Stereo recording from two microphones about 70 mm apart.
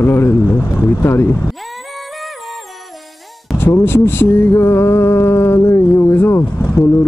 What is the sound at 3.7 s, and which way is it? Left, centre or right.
Speech, left.